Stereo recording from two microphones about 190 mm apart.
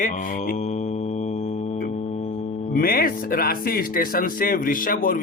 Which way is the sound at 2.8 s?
50° left (ahead or behind).